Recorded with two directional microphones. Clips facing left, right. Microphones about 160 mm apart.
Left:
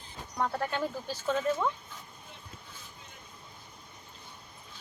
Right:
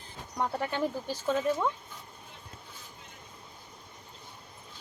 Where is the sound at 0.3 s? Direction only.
15° right (ahead or behind).